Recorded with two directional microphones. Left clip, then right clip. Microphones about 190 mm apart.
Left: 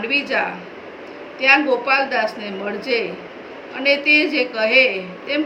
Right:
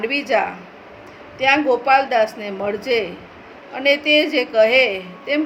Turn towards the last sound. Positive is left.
turn(degrees=-55)  # may be behind; listen again after turning